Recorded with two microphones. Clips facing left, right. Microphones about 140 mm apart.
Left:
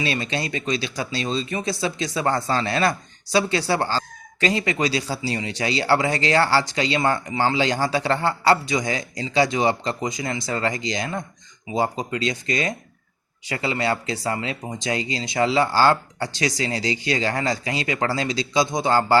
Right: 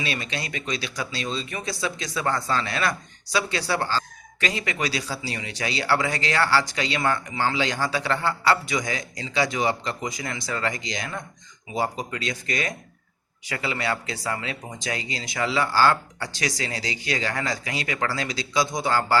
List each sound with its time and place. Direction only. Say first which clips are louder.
0.0 s speech: left 5 dB; 30° left (ahead or behind)